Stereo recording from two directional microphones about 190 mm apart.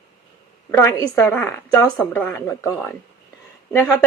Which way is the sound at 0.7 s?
15° left (ahead or behind).